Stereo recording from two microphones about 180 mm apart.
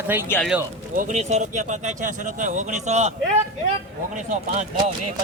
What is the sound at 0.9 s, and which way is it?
Speech, 45° right (ahead or behind).